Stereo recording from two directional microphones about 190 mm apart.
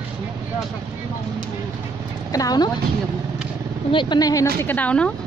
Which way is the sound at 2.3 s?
20° left (ahead or behind).